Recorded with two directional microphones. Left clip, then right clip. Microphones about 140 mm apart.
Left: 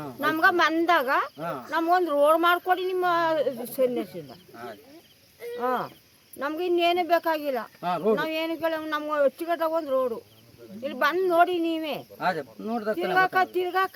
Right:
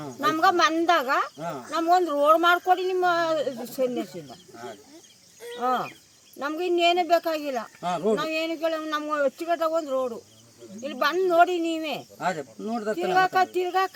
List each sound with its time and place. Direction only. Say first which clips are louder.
0.2 s speech: right 1 dB; 30° left (ahead or behind)
5.5 s speech: right 2 dB; 30° left (ahead or behind)
7.8 s speech: even; 35° right (ahead or behind)
8.1 s speech: even; 30° left (ahead or behind)
11.0 s speech: right 1 dB; 30° left (ahead or behind)
12.1 s speech: left 4 dB; 35° right (ahead or behind)
13.1 s speech: right 1 dB; 30° left (ahead or behind)